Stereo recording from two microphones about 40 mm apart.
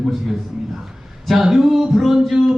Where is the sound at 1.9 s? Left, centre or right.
Centre.